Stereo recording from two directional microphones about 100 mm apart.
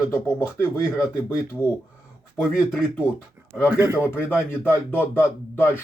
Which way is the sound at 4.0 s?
25° left (ahead or behind).